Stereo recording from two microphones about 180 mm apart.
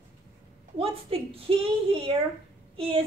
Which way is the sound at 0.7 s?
30° right (ahead or behind).